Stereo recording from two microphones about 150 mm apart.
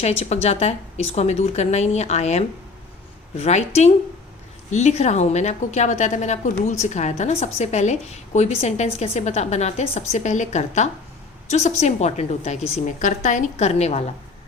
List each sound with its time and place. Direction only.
0.0 s a woman's voice: 45° left (ahead or behind)